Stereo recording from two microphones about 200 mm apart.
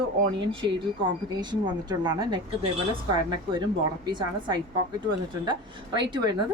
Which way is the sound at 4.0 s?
20° right (ahead or behind).